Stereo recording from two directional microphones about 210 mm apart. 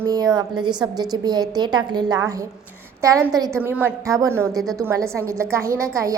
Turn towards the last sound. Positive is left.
turn(degrees=-15)  # may be behind; listen again after turning